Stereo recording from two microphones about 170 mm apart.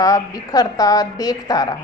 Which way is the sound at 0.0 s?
20° left (ahead or behind).